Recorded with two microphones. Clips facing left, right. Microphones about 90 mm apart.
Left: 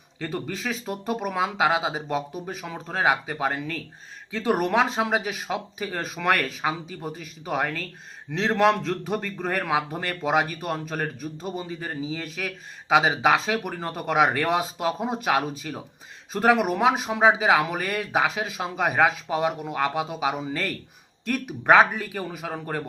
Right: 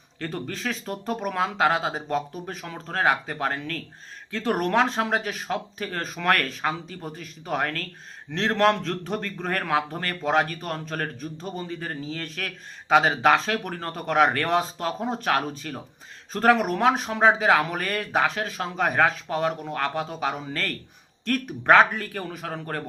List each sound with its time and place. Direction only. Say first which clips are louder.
0.2 s a man's voice: left 1 dB; 5° left (ahead or behind)